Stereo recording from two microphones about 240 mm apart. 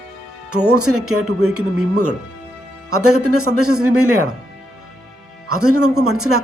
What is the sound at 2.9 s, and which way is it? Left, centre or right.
Speech, right.